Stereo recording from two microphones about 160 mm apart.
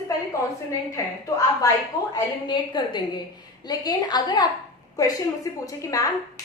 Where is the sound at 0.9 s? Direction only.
20° left (ahead or behind).